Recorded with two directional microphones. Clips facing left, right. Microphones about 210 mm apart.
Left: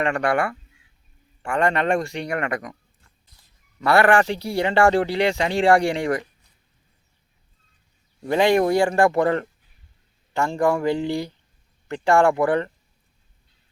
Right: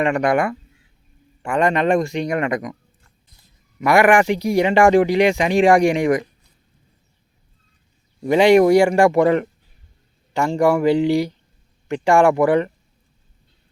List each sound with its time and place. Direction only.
0.0 s speech: 20° right (ahead or behind)
3.8 s speech: 15° right (ahead or behind)
8.2 s speech: 15° right (ahead or behind)